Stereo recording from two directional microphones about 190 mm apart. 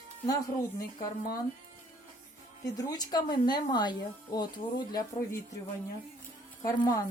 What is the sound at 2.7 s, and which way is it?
Speech, 20° left (ahead or behind).